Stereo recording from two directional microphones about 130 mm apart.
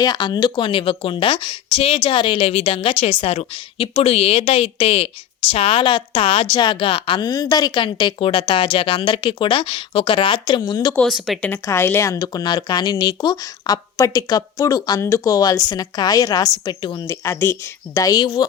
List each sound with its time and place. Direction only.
0.0 s a woman's voice: 30° left (ahead or behind)
10.9 s a woman's voice: centre (ahead or behind); by 17.2 s 35° left (ahead or behind)
17.2 s speech: 20° left (ahead or behind)